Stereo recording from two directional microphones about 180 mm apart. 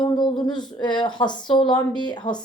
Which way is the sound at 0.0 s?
25° left (ahead or behind).